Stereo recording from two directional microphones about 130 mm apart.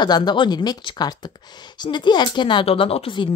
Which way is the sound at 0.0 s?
35° left (ahead or behind).